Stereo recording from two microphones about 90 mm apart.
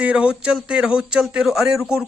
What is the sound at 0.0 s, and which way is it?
A man's voice, 10° right (ahead or behind).